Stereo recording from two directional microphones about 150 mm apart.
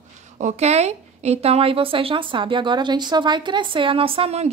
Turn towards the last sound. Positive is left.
turn(degrees=-40)  # may be behind; listen again after turning